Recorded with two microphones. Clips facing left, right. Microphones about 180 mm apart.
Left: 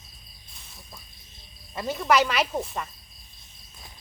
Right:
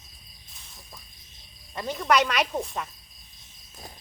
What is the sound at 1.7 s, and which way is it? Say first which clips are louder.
Speech: left 1 dB; 5° left (ahead or behind).